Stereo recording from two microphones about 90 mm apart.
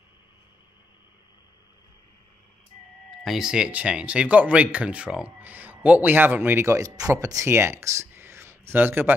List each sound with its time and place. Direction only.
3.1 s speech: 5° right (ahead or behind); by 9.1 s 20° right (ahead or behind)